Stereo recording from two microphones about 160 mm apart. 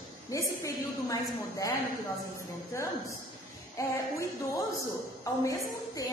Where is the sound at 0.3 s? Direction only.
20° left (ahead or behind).